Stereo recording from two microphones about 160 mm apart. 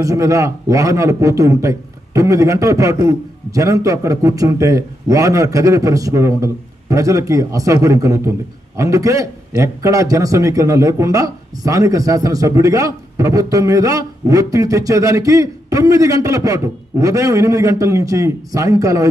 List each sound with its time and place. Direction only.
0.0 s a man's voice: 20° right (ahead or behind)